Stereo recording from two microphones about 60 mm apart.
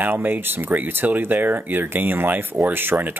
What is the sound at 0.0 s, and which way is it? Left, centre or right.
Speech, right.